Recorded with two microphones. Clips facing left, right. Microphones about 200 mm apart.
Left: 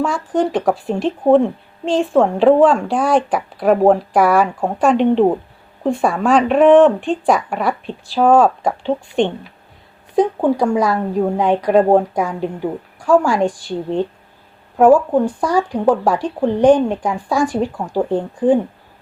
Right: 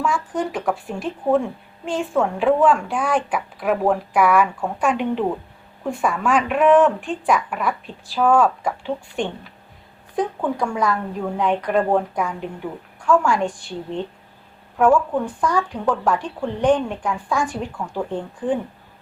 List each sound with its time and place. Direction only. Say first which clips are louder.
0.0 s speech: left 5 dB; 30° left (ahead or behind)
14.8 s speech: left 6 dB; 35° left (ahead or behind)